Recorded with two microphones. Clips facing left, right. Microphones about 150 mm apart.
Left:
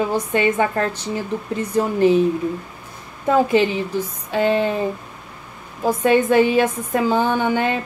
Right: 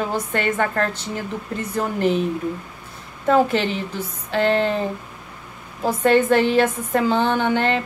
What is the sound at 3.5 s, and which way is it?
A woman's voice, 15° left (ahead or behind).